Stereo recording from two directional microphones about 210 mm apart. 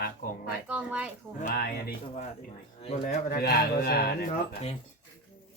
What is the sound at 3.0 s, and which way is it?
Speech, 45° left (ahead or behind).